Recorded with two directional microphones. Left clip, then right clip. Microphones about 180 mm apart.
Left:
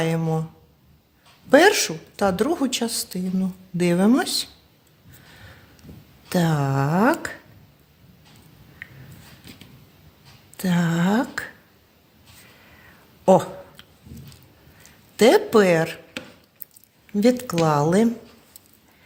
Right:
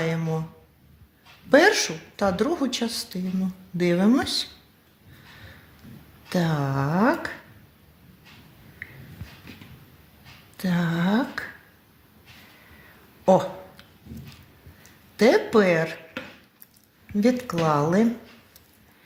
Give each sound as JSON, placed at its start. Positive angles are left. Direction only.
{"t": 0.0, "sound": "a woman's voice", "side_deg": 50}
{"t": 1.5, "sound": "a woman's voice", "side_deg": 45}
{"t": 6.2, "sound": "a woman's voice", "side_deg": 45}
{"t": 10.6, "sound": "a woman's voice", "side_deg": 45}
{"t": 13.2, "sound": "a sound", "side_deg": 45}
{"t": 14.8, "sound": "speech", "side_deg": 50}
{"t": 17.2, "sound": "a woman's voice", "side_deg": 55}